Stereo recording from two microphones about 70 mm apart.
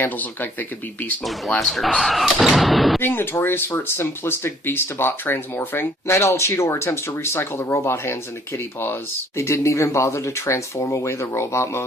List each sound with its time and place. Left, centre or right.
1.2 s speech: centre
3.0 s speech: left